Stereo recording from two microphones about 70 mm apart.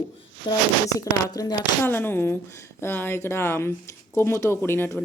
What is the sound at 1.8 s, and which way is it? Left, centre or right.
A woman's voice, left.